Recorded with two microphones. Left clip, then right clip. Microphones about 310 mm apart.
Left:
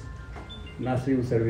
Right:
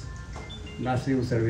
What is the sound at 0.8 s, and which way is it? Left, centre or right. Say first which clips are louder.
Speech: right 1 dB; centre.